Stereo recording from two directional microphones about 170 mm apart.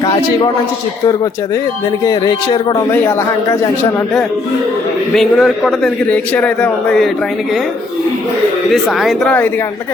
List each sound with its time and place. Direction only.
2.0 s speech: 25° left (ahead or behind)
5.1 s a man's voice: centre (ahead or behind)
8.7 s a man's voice: centre (ahead or behind)